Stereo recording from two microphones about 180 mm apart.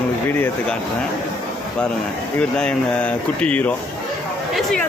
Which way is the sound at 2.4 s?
5° left (ahead or behind).